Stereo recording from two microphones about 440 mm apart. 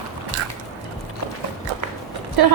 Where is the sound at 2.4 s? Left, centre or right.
Right.